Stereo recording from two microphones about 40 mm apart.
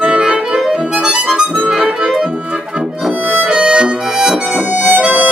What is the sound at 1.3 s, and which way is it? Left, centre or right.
Harmonica, right.